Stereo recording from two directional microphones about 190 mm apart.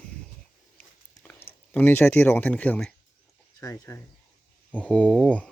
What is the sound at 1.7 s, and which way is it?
Speech, 10° left (ahead or behind).